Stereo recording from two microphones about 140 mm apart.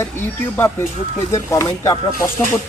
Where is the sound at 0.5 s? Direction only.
20° left (ahead or behind).